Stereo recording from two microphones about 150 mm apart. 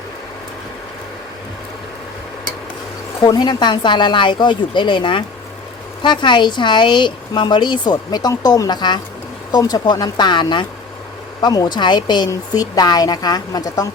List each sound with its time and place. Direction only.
3.2 s speech: 30° left (ahead or behind)